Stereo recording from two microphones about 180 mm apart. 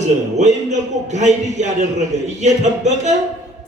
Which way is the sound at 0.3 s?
40° right (ahead or behind).